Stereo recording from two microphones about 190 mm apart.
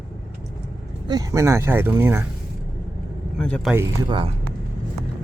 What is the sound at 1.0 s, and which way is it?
Speech, 20° right (ahead or behind).